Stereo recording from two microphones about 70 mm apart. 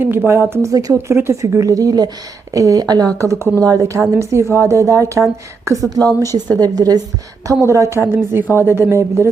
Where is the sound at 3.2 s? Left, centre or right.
Right.